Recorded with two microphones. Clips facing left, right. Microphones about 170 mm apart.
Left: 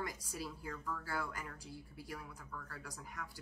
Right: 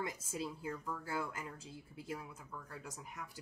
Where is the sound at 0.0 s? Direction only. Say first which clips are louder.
Right 3 dB; 25° right (ahead or behind).